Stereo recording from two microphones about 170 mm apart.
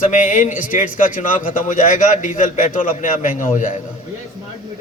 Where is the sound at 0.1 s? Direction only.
50° left (ahead or behind).